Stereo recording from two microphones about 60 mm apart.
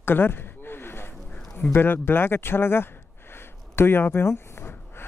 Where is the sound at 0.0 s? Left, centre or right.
Left.